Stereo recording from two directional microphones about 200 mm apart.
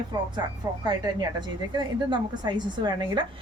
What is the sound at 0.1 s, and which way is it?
A woman's voice, 20° right (ahead or behind).